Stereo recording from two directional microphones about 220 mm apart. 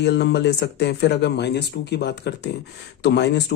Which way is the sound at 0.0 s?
50° left (ahead or behind).